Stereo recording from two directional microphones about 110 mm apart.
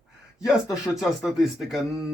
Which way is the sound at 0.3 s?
5° right (ahead or behind).